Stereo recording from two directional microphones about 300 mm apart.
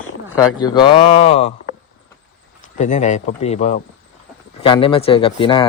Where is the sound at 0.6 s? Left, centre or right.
Centre.